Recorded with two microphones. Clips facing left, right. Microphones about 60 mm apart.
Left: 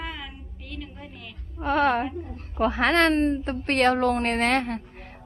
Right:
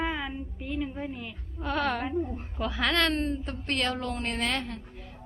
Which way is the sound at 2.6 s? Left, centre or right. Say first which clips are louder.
Left 7 dB; left.